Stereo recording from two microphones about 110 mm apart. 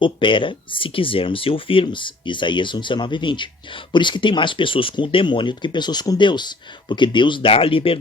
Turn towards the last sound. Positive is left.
turn(degrees=55)  # may be behind; listen again after turning